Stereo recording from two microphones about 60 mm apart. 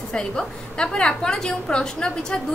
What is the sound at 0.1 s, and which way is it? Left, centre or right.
A woman's voice, centre.